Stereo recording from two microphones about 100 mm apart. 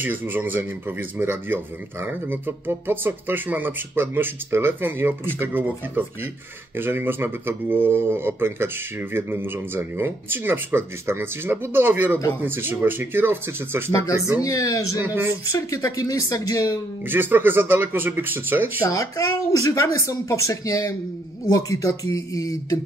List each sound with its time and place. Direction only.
0.0 s speech: 20° right (ahead or behind)
14.4 s speech: 35° left (ahead or behind)
15.0 s speech: 20° right (ahead or behind)
15.5 s speech: 35° left (ahead or behind)
17.1 s speech: 20° right (ahead or behind)
18.9 s speech: 35° left (ahead or behind)